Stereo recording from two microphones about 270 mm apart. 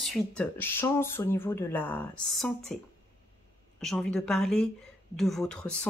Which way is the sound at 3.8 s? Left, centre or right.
Centre.